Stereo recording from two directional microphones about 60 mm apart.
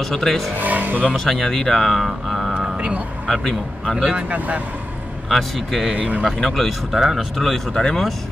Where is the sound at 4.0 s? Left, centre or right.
Centre.